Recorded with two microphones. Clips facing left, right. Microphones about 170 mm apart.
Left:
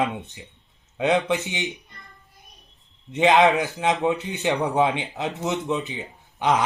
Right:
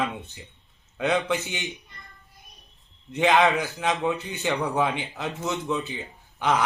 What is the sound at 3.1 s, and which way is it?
A man's voice, 20° left (ahead or behind).